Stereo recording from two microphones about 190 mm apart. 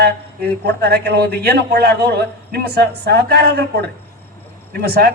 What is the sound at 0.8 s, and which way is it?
A man's voice, 55° right (ahead or behind).